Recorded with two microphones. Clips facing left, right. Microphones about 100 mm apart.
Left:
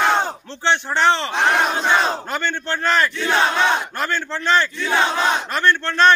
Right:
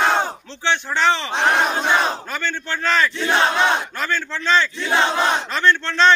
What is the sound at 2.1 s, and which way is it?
Crowd, 20° left (ahead or behind).